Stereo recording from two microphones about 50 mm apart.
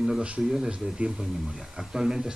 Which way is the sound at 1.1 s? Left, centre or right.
Centre.